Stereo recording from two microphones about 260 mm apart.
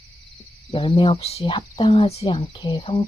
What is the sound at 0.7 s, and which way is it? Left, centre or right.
Speech, centre.